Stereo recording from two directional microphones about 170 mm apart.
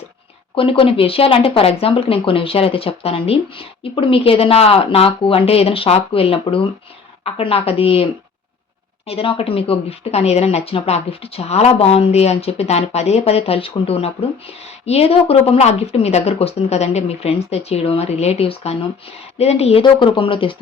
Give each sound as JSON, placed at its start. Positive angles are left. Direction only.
{"t": 0.5, "sound": "speech", "side_deg": 30}
{"t": 9.0, "sound": "speech", "side_deg": 35}